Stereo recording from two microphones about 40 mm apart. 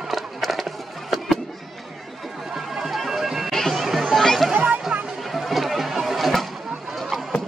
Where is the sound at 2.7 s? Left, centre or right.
Centre.